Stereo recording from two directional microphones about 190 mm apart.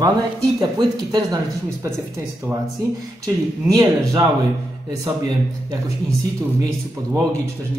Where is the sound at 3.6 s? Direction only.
20° right (ahead or behind).